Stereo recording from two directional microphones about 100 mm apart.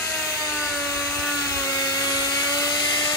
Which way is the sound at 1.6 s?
35° left (ahead or behind).